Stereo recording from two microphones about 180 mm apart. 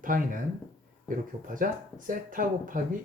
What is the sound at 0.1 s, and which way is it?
Speech, 50° right (ahead or behind).